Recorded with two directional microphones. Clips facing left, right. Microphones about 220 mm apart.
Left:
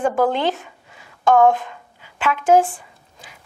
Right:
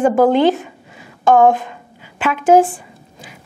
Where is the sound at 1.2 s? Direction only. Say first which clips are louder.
Right 3 dB; 10° right (ahead or behind).